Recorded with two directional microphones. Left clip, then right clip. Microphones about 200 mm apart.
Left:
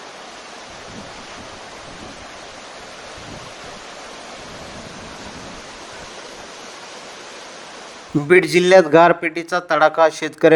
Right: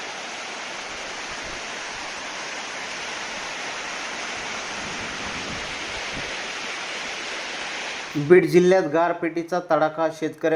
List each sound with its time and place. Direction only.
8.3 s speech: 30° left (ahead or behind)